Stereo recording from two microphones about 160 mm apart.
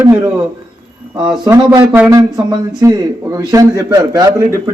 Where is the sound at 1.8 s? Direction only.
10° right (ahead or behind).